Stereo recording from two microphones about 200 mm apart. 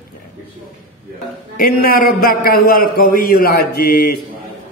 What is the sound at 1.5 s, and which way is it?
Mantra, 50° left (ahead or behind).